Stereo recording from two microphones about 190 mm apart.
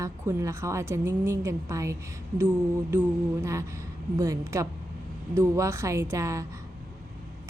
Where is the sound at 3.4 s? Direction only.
15° right (ahead or behind).